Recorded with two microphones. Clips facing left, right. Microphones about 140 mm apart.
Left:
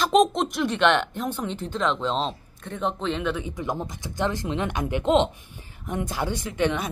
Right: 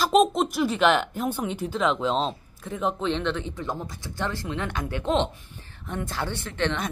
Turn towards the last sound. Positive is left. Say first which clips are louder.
# left 3 dB
turn(degrees=10)  # may be behind; listen again after turning